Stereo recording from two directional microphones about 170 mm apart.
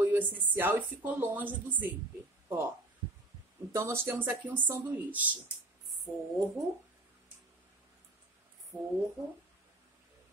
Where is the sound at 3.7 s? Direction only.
15° right (ahead or behind).